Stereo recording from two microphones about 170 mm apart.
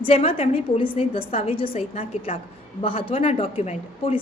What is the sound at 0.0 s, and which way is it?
A woman's voice, 35° left (ahead or behind).